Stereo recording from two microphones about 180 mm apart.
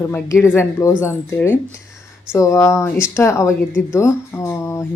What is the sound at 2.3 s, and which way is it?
Speech, 15° left (ahead or behind).